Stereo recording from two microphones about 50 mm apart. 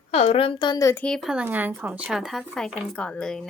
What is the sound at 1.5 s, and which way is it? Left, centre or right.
Speech, right.